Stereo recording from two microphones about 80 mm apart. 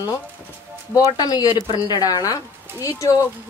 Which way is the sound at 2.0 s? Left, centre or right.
Left.